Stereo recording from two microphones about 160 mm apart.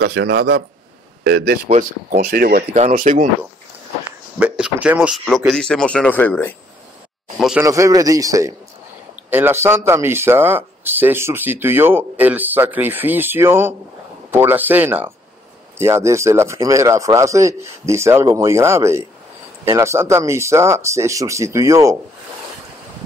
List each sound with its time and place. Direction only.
0.0 s a man's voice: 90° right
1.7 s speech: 50° right (ahead or behind); by 2.6 s 65° right (ahead or behind)
2.7 s speech: 50° right (ahead or behind)
4.4 s speech: 10° right (ahead or behind); by 6.5 s 10° left (ahead or behind)
7.3 s speech: centre (ahead or behind)
7.6 s a man's voice: 20° right (ahead or behind)